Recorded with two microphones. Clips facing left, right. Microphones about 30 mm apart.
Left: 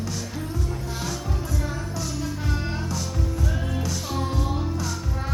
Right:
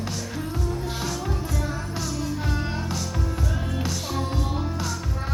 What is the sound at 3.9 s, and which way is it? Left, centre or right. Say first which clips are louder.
Music: even; centre.